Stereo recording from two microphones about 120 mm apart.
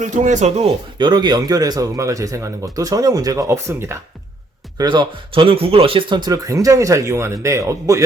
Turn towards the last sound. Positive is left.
turn(degrees=-25)  # may be behind; listen again after turning